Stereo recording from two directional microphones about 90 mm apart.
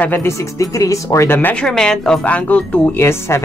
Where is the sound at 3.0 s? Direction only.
30° left (ahead or behind).